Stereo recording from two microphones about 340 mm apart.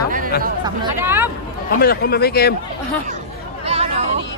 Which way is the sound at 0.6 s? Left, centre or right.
Centre.